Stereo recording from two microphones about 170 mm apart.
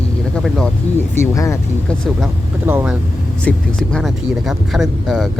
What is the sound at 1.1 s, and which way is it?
Speech, 15° left (ahead or behind).